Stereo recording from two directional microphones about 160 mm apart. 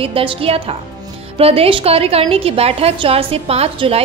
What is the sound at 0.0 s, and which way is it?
A woman's voice, 35° right (ahead or behind).